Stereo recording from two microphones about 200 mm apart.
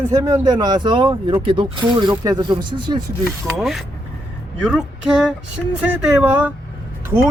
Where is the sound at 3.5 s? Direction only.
Centre (ahead or behind).